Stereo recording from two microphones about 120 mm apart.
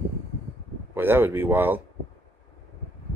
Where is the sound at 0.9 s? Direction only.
20° right (ahead or behind).